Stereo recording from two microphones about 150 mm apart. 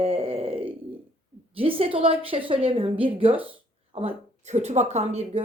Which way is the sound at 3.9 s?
45° right (ahead or behind).